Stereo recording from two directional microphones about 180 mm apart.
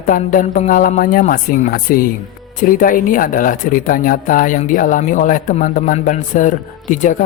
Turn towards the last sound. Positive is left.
turn(degrees=45)  # may be behind; listen again after turning